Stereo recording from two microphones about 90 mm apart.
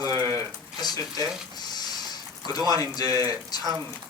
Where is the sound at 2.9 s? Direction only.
45° left (ahead or behind).